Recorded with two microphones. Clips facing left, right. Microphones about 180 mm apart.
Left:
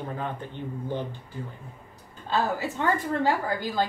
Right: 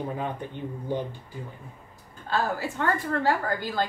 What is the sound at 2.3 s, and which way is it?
A woman's voice, 20° left (ahead or behind).